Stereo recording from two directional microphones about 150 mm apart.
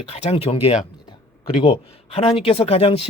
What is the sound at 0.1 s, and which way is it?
A man's voice, 40° left (ahead or behind).